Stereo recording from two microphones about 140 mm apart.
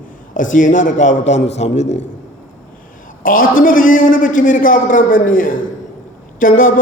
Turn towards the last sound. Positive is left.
turn(degrees=75)  # may be behind; listen again after turning